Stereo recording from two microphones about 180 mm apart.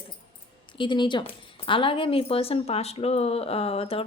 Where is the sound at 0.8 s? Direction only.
25° left (ahead or behind).